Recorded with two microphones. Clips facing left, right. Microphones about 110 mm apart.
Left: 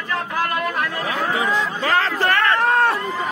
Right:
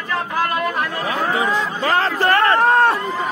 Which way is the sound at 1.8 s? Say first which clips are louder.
Right 3 dB; 35° right (ahead or behind).